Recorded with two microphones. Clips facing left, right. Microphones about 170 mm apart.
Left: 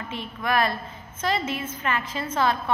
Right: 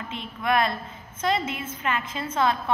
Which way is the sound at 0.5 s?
20° right (ahead or behind).